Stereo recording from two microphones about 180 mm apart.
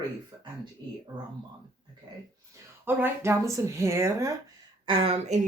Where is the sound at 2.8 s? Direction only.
15° right (ahead or behind).